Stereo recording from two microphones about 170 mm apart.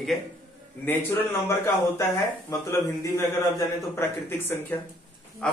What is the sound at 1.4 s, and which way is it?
A man's voice, 15° left (ahead or behind).